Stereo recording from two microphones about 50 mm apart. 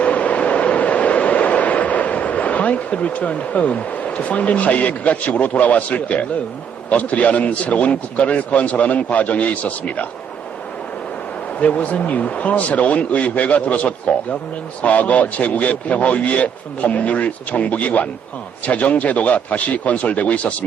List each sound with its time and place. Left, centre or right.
0.0 s vehicle: left
6.9 s a man's voice: left
11.6 s a man's voice: left